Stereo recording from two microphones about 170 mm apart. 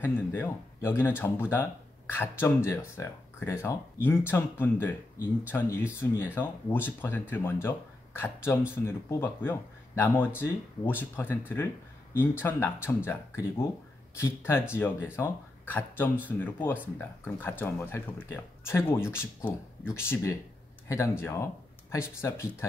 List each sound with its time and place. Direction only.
0.0 s speech: 15° left (ahead or behind)